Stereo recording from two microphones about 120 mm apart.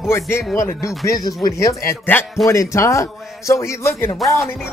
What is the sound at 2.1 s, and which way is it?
Speech, 15° left (ahead or behind).